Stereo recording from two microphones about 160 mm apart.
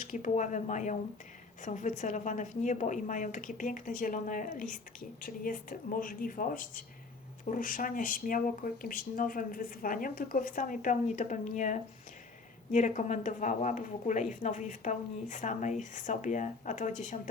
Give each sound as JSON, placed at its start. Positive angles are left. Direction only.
{"t": 0.0, "sound": "speech", "side_deg": 50}